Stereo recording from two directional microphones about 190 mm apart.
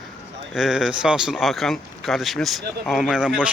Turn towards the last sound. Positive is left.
turn(degrees=-5)  # may be behind; listen again after turning